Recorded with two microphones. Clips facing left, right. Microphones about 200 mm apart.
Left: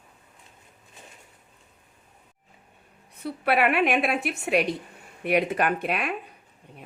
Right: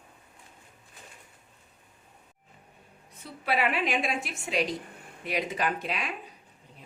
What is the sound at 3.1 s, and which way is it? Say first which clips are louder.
A woman's voice: left 6 dB; 60° left (ahead or behind).